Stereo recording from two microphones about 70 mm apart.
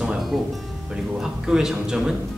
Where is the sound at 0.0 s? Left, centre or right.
Centre.